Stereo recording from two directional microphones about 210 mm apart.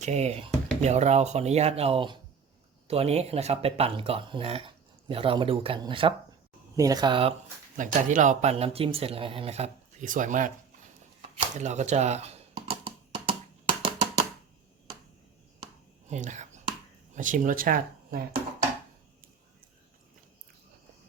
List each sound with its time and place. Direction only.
0.0 s speech: 30° right (ahead or behind)
7.8 s speech: 35° right (ahead or behind)
11.3 s a sound: 35° right (ahead or behind)
16.0 s speech: 35° right (ahead or behind)